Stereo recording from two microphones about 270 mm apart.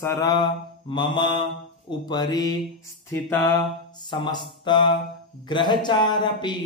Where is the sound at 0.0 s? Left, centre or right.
Centre.